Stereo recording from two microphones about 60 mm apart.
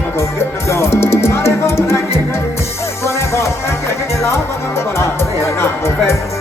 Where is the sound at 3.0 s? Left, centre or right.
Left.